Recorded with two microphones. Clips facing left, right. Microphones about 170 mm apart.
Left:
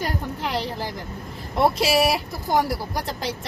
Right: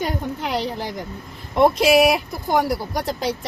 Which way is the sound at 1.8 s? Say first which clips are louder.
Right 5 dB; 55° right (ahead or behind).